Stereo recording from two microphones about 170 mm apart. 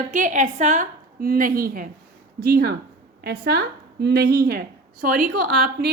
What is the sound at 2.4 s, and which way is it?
Speech, 65° right (ahead or behind).